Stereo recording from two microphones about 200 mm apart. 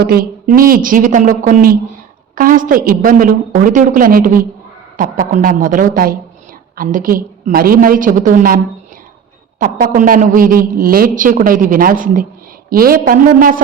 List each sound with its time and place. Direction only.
0.0 s a woman's voice: 50° right (ahead or behind)